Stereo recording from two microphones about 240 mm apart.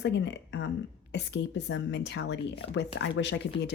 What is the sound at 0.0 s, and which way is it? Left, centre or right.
Speech, left.